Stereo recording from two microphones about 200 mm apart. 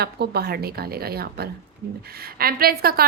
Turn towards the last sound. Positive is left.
turn(degrees=-50)  # may be behind; listen again after turning